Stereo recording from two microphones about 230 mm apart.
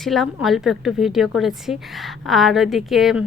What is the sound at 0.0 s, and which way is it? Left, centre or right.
A woman's voice, centre.